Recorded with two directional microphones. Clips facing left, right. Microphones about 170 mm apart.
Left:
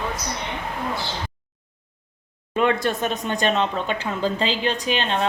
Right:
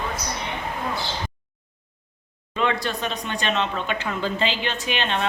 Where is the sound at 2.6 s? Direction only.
50° left (ahead or behind).